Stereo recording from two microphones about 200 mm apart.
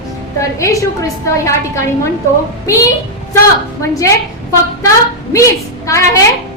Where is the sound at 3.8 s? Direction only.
15° left (ahead or behind).